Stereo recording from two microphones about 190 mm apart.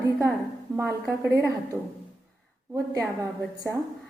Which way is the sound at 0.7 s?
15° right (ahead or behind).